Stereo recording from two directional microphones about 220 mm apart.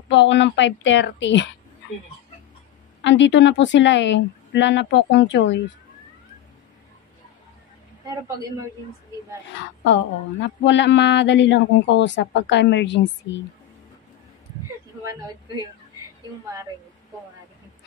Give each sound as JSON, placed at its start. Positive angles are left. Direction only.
{"t": 0.1, "sound": "a woman's voice", "side_deg": 55}
{"t": 3.0, "sound": "a woman's voice", "side_deg": 55}
{"t": 10.4, "sound": "speech", "side_deg": 55}